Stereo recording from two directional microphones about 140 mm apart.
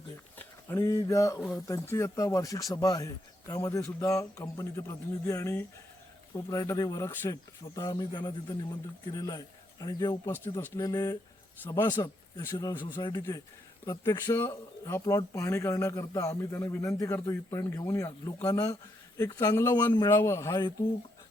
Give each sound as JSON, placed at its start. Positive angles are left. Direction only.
{"t": 0.3, "sound": "speech", "side_deg": 15}